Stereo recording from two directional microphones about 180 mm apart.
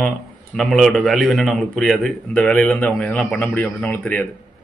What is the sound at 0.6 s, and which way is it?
A man's voice, centre (ahead or behind).